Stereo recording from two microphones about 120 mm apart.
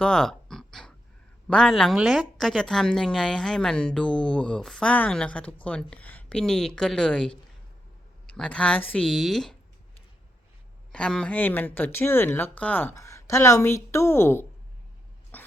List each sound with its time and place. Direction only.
0.0 s a sound: 5° left (ahead or behind)
1.5 s speech: 5° left (ahead or behind)
9.0 s speech: centre (ahead or behind)
10.9 s speech: 5° left (ahead or behind)
13.0 s speech: 25° left (ahead or behind)
15.3 s a sound: 15° left (ahead or behind)